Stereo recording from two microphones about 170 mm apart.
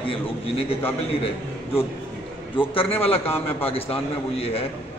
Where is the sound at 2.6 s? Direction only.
35° left (ahead or behind).